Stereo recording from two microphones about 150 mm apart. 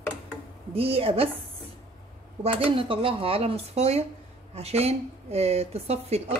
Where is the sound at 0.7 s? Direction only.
40° right (ahead or behind).